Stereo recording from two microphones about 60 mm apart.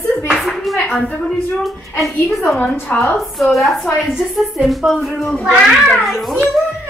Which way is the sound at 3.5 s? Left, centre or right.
Centre.